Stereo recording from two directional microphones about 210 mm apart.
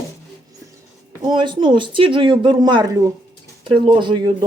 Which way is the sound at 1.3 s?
20° right (ahead or behind).